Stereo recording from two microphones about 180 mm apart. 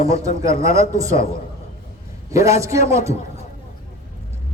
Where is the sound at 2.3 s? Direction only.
15° right (ahead or behind).